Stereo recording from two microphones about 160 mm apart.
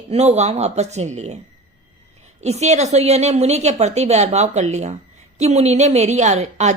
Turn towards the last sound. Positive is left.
turn(degrees=-45)  # may be behind; listen again after turning